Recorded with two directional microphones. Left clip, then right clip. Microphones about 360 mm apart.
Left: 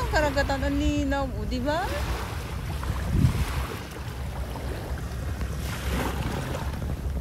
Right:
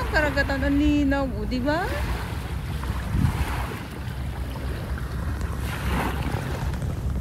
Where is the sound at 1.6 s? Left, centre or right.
Centre.